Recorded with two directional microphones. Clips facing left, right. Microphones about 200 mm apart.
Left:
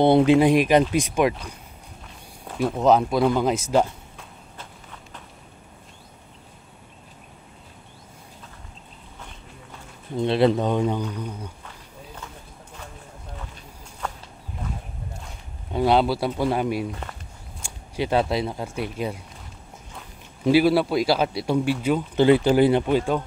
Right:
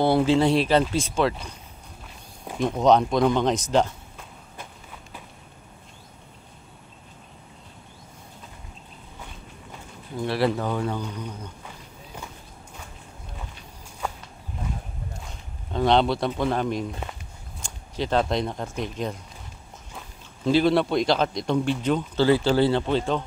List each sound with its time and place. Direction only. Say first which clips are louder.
0.0 s a man's voice: left 4 dB; 20° left (ahead or behind)
2.6 s speech: even; 5° left (ahead or behind)
10.1 s speech: left 5 dB; 20° left (ahead or behind)
15.7 s a man's voice: left 1 dB; 5° left (ahead or behind)
20.4 s a man's voice: left 2 dB; 10° left (ahead or behind)